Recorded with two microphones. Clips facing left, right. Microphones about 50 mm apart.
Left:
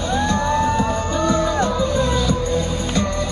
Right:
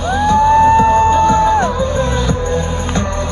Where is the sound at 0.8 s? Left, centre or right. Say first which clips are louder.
Right 10 dB; right.